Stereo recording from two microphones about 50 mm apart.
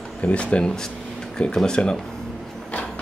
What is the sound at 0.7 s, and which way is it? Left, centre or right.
Speech, centre.